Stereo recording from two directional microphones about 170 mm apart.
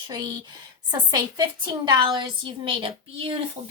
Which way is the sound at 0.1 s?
25° right (ahead or behind).